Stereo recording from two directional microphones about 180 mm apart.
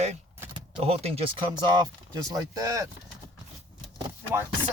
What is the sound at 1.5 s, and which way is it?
Speech, 25° right (ahead or behind).